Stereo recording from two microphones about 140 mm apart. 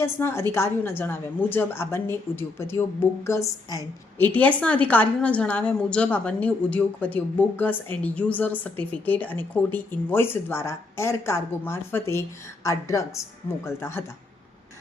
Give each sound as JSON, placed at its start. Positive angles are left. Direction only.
{"t": 0.0, "sound": "a woman's voice", "side_deg": 15}
{"t": 4.2, "sound": "a woman's voice", "side_deg": 10}